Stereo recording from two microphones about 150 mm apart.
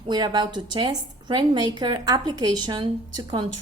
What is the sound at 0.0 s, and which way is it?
A woman's voice, 30° right (ahead or behind).